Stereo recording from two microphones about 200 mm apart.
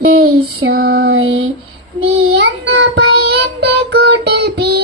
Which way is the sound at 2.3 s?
55° right (ahead or behind).